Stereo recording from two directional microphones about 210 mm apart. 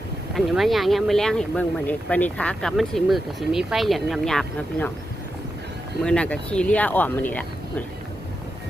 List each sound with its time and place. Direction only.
0.3 s speech: centre (ahead or behind)
6.0 s speech: 5° left (ahead or behind)